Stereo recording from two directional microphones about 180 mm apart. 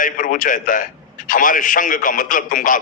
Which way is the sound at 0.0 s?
50° left (ahead or behind).